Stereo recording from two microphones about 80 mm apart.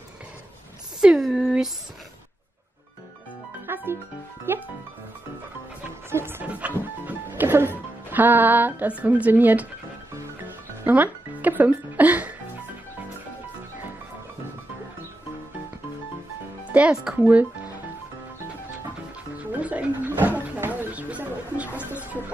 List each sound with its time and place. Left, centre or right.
1.0 s a sound: centre
3.6 s music: right
4.5 s speech: right
6.0 s music: right
6.4 s speech: centre
7.1 s music: right
8.1 s speech: right
10.9 s music: right
16.7 s speech: centre
19.3 s music: centre